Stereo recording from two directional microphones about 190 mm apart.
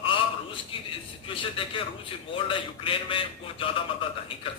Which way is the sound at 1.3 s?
25° left (ahead or behind).